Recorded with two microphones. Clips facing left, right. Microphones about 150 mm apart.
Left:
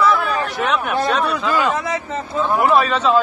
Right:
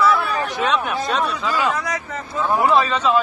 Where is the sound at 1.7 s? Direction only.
25° left (ahead or behind).